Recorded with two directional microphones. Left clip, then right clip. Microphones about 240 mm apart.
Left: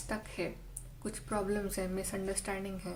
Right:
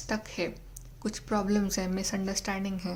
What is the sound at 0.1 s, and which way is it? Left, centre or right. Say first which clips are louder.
Speech: right 5 dB; right.